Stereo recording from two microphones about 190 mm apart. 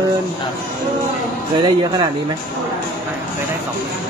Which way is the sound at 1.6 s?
25° right (ahead or behind).